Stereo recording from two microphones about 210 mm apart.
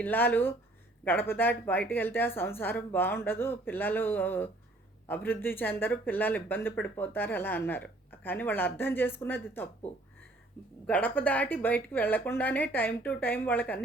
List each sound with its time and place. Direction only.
0.0 s speech: 10° left (ahead or behind)
10.8 s speech: 10° left (ahead or behind)